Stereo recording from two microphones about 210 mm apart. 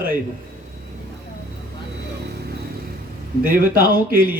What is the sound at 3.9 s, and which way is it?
Mantra, 45° right (ahead or behind).